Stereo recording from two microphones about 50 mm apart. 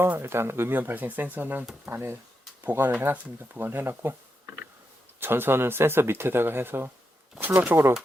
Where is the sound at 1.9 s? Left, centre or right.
Right.